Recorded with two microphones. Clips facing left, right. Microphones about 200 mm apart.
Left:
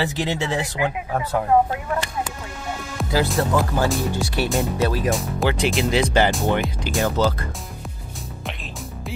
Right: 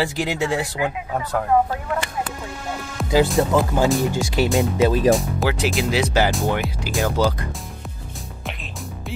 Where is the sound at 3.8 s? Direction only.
Centre (ahead or behind).